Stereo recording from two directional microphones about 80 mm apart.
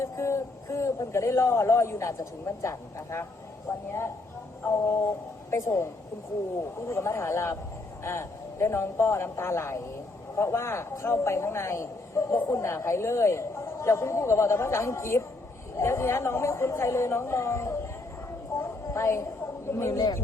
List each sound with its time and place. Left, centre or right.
0.0 s a man's voice: left
4.6 s a man's voice: left
18.5 s a sound: left